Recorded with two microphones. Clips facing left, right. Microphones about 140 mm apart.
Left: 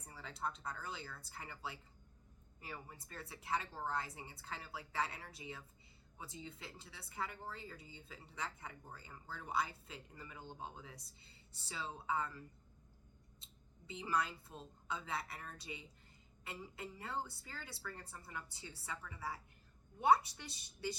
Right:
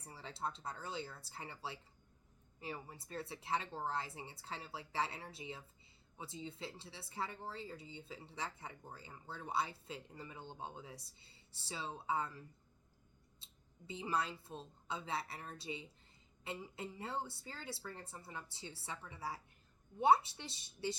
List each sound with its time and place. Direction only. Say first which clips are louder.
0.0 s speech: right 1 dB; 30° right (ahead or behind)
13.4 s speech: right 5 dB; 25° right (ahead or behind)